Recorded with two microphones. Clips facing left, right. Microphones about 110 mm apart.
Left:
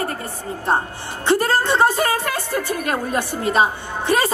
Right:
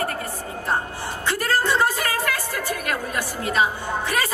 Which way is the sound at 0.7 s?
25° left (ahead or behind).